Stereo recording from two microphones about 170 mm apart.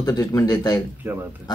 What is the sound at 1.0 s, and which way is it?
Speech, 15° right (ahead or behind).